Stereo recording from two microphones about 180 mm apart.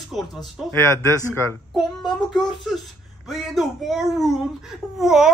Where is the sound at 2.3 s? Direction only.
Centre (ahead or behind).